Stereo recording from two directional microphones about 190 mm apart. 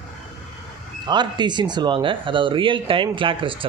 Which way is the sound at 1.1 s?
25° right (ahead or behind).